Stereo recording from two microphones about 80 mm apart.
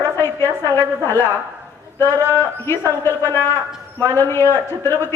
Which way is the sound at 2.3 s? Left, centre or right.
Left.